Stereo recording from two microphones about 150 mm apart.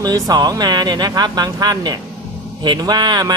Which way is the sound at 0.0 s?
25° right (ahead or behind).